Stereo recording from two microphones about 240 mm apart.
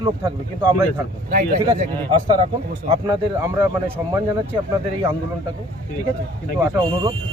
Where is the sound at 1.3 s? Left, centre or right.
Right.